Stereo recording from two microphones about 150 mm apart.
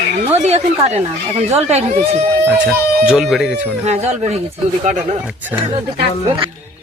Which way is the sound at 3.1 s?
5° right (ahead or behind).